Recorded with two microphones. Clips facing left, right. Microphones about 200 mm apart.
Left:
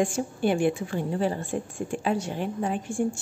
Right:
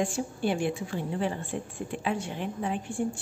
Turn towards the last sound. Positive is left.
turn(degrees=45)  # may be behind; listen again after turning